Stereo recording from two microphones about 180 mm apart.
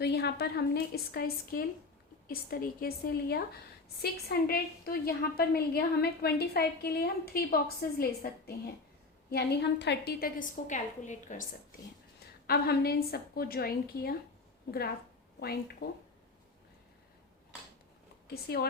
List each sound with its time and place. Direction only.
0.0 s a woman's voice: 65° left (ahead or behind); by 11.4 s 45° left (ahead or behind)
12.5 s a woman's voice: 60° left (ahead or behind)
15.8 s a woman's voice: 55° left (ahead or behind)
18.4 s a woman's voice: 60° left (ahead or behind)